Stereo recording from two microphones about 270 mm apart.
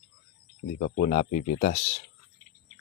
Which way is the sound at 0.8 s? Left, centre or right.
Left.